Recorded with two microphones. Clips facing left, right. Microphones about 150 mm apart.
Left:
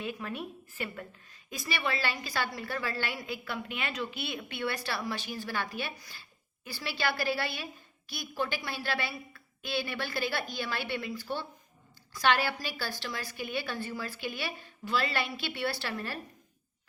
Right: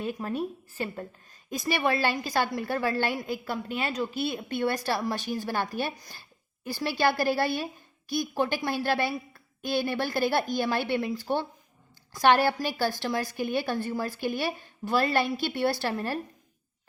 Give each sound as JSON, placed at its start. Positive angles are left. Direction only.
{"t": 0.0, "sound": "a woman's voice", "side_deg": -40}